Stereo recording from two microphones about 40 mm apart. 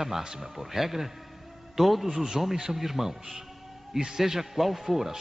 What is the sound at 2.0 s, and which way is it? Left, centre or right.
A man's voice, centre.